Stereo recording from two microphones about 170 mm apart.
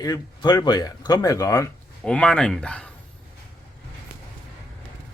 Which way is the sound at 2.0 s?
5° left (ahead or behind).